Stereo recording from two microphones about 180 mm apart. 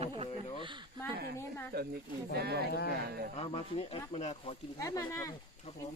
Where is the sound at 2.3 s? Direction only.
65° right (ahead or behind).